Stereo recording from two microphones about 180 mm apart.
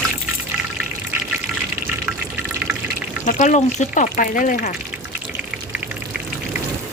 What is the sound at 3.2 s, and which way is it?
Speech, 45° left (ahead or behind).